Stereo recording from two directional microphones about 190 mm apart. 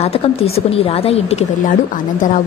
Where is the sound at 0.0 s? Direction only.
30° left (ahead or behind).